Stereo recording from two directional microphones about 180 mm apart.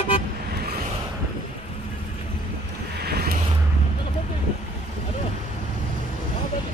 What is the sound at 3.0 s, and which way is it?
Vehicle, 60° right (ahead or behind).